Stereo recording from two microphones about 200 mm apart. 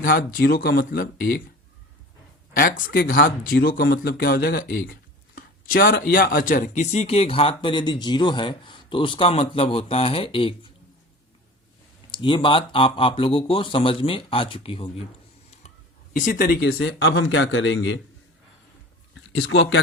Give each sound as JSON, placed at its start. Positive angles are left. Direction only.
{"t": 0.0, "sound": "speech", "side_deg": 45}
{"t": 2.6, "sound": "speech", "side_deg": 45}
{"t": 12.1, "sound": "speech", "side_deg": 25}
{"t": 16.1, "sound": "speech", "side_deg": 45}
{"t": 16.7, "sound": "speech", "side_deg": 70}
{"t": 19.1, "sound": "speech", "side_deg": 80}